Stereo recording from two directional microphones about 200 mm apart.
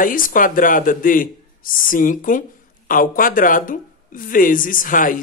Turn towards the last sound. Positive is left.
turn(degrees=40)  # may be behind; listen again after turning